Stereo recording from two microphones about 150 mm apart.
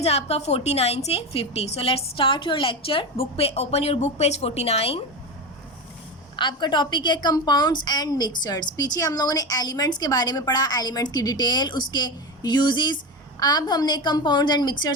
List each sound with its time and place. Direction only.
0.0 s a woman's voice: 45° left (ahead or behind)
6.3 s a woman's voice: 30° left (ahead or behind)